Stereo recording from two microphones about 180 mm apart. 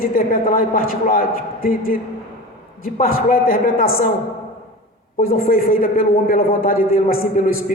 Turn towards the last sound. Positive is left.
turn(degrees=50)  # may be behind; listen again after turning